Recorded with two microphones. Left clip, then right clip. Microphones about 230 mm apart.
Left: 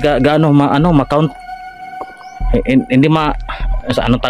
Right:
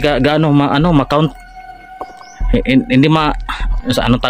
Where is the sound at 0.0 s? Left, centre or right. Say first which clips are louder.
Left 1 dB; centre.